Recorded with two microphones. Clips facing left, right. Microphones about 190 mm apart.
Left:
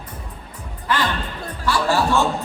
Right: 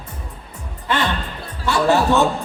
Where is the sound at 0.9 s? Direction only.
25° right (ahead or behind).